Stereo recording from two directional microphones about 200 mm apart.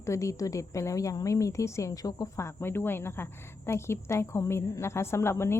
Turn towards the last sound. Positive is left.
turn(degrees=10)  # may be behind; listen again after turning